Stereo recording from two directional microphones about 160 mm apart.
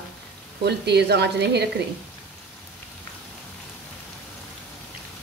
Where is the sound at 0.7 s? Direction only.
90° right.